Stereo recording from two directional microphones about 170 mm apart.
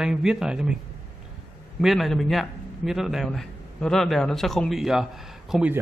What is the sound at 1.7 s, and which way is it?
A man's voice, centre (ahead or behind).